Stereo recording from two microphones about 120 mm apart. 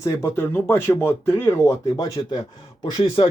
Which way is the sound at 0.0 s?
20° left (ahead or behind).